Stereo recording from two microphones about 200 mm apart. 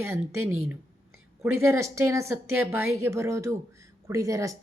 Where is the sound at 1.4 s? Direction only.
15° right (ahead or behind).